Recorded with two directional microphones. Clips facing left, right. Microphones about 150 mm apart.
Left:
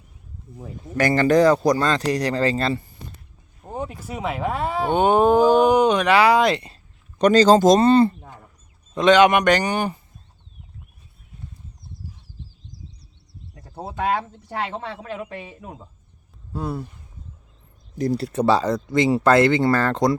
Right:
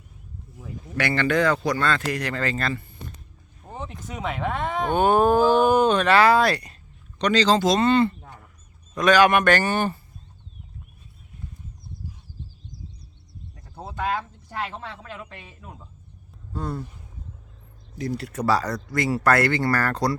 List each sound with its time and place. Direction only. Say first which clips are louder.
0.6 s speech: left 5 dB; 40° left (ahead or behind)
3.7 s speech: left 5 dB; 10° left (ahead or behind)
4.9 s speech: left 2 dB; 20° left (ahead or behind)
7.2 s speech: left 6 dB; 45° left (ahead or behind)
9.0 s speech: left 3 dB; 20° left (ahead or behind)
13.7 s a sound: left 5 dB; 30° left (ahead or behind)
14.7 s speech: left 6 dB; 30° left (ahead or behind)
16.5 s speech: left 3 dB; 10° left (ahead or behind)
17.9 s speech: left 7 dB; 40° left (ahead or behind); by 20.1 s 20° left (ahead or behind)